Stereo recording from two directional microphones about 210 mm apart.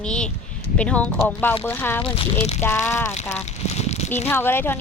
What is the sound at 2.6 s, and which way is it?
Speech, 10° left (ahead or behind).